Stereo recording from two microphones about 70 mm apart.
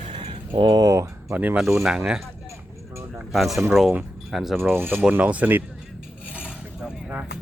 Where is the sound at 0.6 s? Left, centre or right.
Right.